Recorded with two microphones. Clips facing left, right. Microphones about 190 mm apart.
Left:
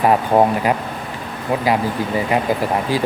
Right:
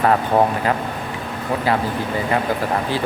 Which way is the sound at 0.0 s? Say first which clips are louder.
Left 2 dB; 15° left (ahead or behind).